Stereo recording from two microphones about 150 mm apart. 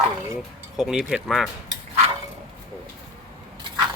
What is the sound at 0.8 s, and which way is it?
Speech, 5° right (ahead or behind).